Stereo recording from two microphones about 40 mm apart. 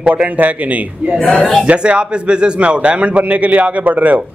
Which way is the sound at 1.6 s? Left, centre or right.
Right.